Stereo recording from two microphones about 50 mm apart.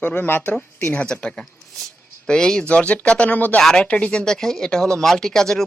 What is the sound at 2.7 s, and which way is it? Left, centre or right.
Speech, left.